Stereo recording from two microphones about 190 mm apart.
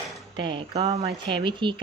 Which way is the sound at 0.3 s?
25° right (ahead or behind).